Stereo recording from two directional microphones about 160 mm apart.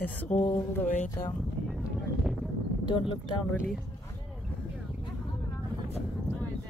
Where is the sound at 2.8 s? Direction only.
30° left (ahead or behind).